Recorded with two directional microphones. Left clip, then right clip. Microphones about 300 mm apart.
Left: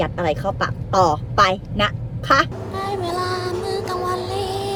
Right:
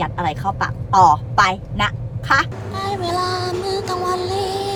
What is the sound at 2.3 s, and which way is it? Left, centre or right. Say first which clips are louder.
Child singing: even; centre.